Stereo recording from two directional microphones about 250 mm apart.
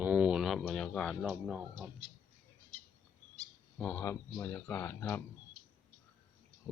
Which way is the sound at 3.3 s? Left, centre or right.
Centre.